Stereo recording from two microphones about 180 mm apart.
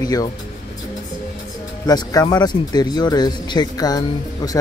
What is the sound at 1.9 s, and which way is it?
Speech, 20° left (ahead or behind).